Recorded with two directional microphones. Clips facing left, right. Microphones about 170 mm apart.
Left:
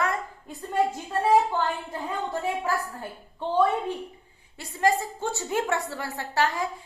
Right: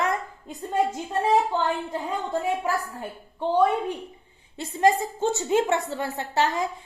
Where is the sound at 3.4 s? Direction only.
15° right (ahead or behind).